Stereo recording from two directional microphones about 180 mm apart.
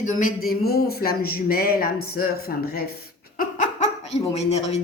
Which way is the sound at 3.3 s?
45° left (ahead or behind).